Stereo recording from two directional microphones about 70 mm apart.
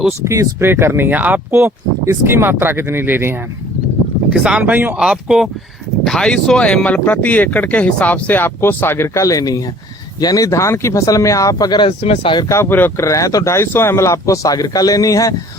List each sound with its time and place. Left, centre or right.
0.3 s speech: right
1.5 s speech: right
4.4 s speech: centre
4.6 s speech: right
4.9 s speech: centre
6.1 s speech: centre; by 9.2 s left
9.2 s speech: left
12.6 s speech: left
13.0 s speech: left